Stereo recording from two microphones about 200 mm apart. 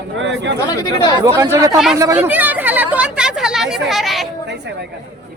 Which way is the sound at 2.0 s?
10° right (ahead or behind).